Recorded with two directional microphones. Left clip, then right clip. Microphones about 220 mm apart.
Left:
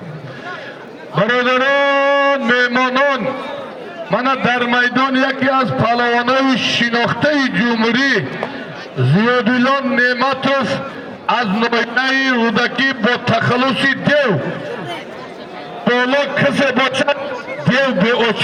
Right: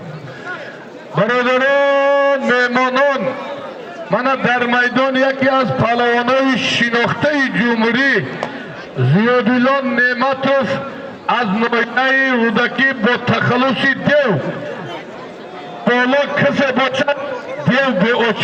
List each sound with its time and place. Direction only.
1.1 s a sound: 30° left (ahead or behind)
4.4 s a man's voice: 35° left (ahead or behind); by 14.3 s 50° left (ahead or behind)
15.8 s a man's voice: 50° left (ahead or behind)